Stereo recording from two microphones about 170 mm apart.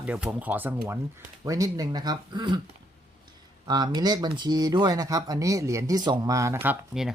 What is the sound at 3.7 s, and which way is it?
Speech, 25° right (ahead or behind).